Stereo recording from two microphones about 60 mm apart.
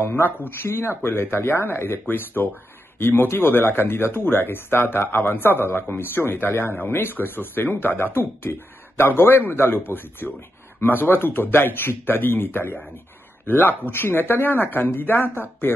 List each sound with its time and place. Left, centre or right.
0.0 s speech: left